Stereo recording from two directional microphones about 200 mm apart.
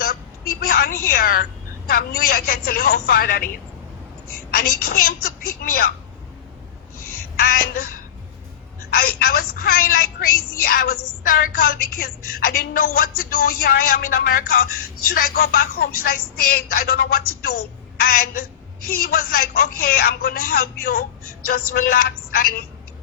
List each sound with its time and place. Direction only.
0.6 s a woman's voice: 45° left (ahead or behind)
4.5 s a woman's voice: 45° left (ahead or behind)
7.3 s a sound: 50° left (ahead or behind)
8.9 s a woman's voice: 45° left (ahead or behind)